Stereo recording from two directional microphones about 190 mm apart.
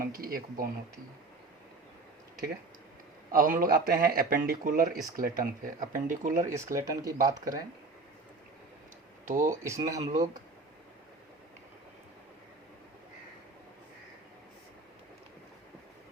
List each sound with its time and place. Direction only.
0.0 s speech: 50° right (ahead or behind)
3.3 s speech: 45° right (ahead or behind)
6.4 s speech: 15° right (ahead or behind)
9.2 s speech: 45° right (ahead or behind)
9.5 s speech: 15° right (ahead or behind)